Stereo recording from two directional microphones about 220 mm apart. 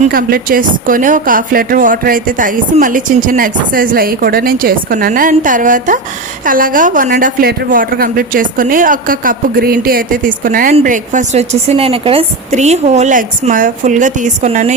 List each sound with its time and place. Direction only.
0.0 s a woman's voice: 40° right (ahead or behind)